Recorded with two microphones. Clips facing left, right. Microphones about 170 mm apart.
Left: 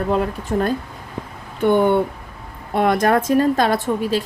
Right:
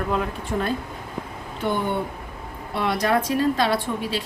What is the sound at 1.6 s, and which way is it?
Speech, 60° left (ahead or behind).